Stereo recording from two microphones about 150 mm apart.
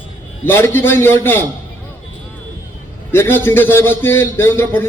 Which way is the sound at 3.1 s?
15° left (ahead or behind).